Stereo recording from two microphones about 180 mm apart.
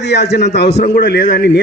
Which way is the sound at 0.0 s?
65° left (ahead or behind).